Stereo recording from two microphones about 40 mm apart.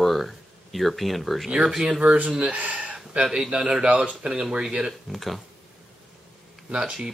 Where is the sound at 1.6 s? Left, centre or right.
Centre.